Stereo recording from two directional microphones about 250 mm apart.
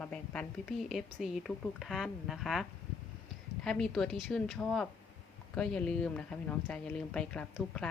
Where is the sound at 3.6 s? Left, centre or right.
Centre.